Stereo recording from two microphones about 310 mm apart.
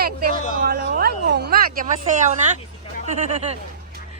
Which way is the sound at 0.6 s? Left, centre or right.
Right.